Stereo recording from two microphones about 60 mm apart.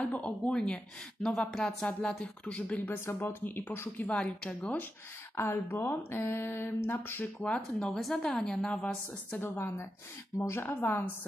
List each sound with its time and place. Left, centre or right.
0.0 s a woman's voice: left
2.8 s speech: left
4.1 s speech: centre
5.3 s speech: left
7.4 s speech: left
7.9 s a woman's voice: centre
9.4 s speech: left